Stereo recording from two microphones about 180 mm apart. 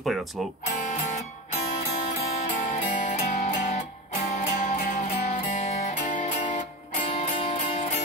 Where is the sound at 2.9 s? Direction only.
40° left (ahead or behind).